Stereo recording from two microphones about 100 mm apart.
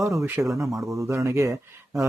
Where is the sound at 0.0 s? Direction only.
30° right (ahead or behind).